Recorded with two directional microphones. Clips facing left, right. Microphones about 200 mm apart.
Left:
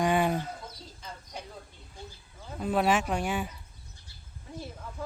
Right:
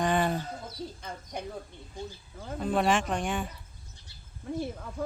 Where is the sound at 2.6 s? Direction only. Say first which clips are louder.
Even; 5° left (ahead or behind).